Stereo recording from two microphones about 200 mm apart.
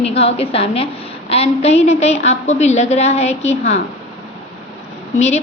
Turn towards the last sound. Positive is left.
turn(degrees=35)  # may be behind; listen again after turning